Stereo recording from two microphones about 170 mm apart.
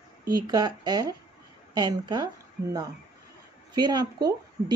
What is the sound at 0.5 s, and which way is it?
A woman's voice, 25° right (ahead or behind).